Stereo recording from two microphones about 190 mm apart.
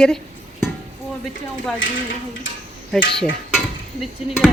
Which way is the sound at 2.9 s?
Centre (ahead or behind).